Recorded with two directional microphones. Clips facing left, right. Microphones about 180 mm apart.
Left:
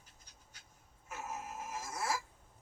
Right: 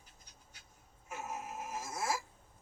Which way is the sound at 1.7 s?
10° right (ahead or behind).